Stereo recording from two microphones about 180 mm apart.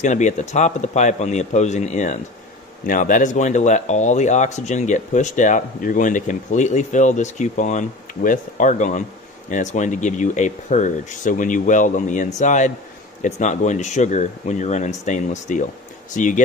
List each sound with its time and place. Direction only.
0.0 s speech: 40° left (ahead or behind)